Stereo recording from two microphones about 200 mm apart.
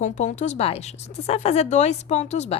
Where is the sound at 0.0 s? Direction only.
35° left (ahead or behind).